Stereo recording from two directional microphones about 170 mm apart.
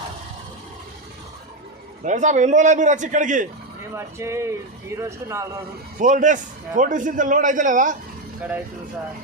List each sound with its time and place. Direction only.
2.0 s a man's voice: 45° right (ahead or behind)
3.9 s speech: 15° right (ahead or behind)
6.0 s a man's voice: 50° right (ahead or behind)